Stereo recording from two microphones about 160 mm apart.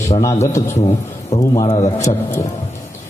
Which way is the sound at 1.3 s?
45° left (ahead or behind).